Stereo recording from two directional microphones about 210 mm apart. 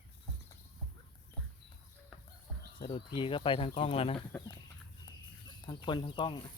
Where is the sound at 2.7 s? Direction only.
25° left (ahead or behind).